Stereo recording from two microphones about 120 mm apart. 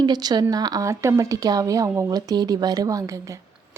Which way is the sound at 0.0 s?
35° right (ahead or behind).